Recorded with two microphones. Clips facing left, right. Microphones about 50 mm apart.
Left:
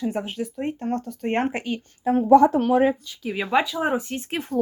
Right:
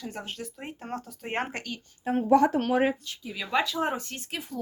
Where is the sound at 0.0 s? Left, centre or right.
Centre.